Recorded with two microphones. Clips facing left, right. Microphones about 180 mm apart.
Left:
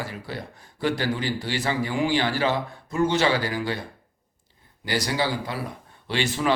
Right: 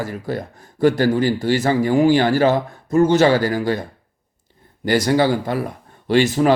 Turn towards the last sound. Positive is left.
turn(degrees=-40)  # may be behind; listen again after turning